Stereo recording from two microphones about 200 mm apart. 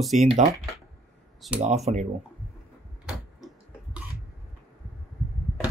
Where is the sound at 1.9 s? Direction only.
35° right (ahead or behind).